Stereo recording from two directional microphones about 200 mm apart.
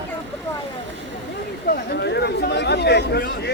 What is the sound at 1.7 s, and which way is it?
Speech, 55° left (ahead or behind).